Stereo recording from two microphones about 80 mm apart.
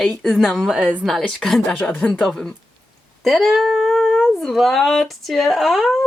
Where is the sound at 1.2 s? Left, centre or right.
Centre.